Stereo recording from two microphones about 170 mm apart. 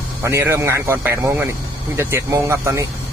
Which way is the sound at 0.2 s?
15° right (ahead or behind).